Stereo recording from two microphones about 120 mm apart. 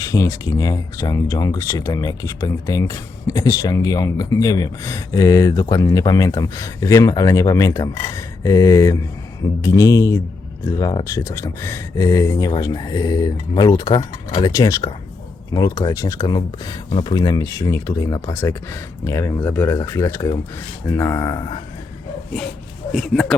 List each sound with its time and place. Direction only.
0.0 s speech: 25° left (ahead or behind)
22.9 s speech: centre (ahead or behind)